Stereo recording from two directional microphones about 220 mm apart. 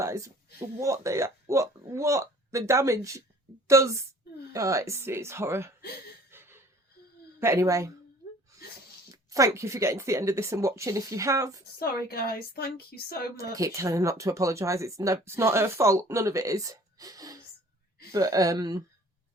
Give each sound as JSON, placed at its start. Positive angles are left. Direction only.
{"t": 0.0, "sound": "a sound", "side_deg": -15}
{"t": 0.8, "sound": "speech", "side_deg": -15}
{"t": 6.3, "sound": "a sound", "side_deg": -10}
{"t": 7.3, "sound": "speech", "side_deg": -15}
{"t": 9.1, "sound": "speech", "side_deg": -15}
{"t": 11.8, "sound": "a woman's voice", "side_deg": 45}
{"t": 13.5, "sound": "speech", "side_deg": -15}